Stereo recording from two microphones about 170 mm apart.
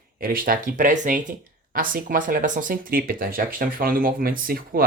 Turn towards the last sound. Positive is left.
turn(degrees=-60)  # may be behind; listen again after turning